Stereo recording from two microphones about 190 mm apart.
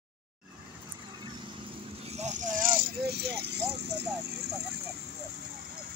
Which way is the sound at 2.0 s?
35° right (ahead or behind).